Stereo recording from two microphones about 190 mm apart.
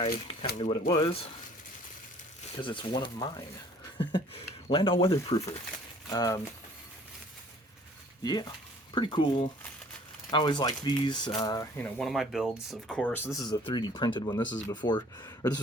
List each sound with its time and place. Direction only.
0.6 s speech: 25° left (ahead or behind)
2.6 s speech: 25° left (ahead or behind)
8.2 s speech: 20° left (ahead or behind)
11.8 s speech: centre (ahead or behind); by 15.6 s 20° left (ahead or behind)